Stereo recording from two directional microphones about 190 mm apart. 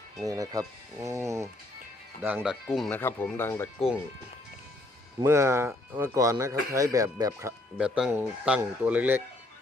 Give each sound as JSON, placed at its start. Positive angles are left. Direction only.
{"t": 0.3, "sound": "speech", "side_deg": -20}
{"t": 5.2, "sound": "speech", "side_deg": -15}
{"t": 7.8, "sound": "speech", "side_deg": -5}